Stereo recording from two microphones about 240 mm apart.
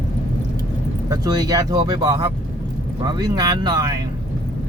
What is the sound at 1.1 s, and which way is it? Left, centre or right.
Speech, centre.